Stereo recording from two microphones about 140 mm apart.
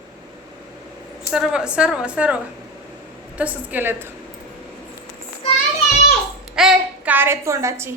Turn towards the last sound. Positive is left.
turn(degrees=-20)  # may be behind; listen again after turning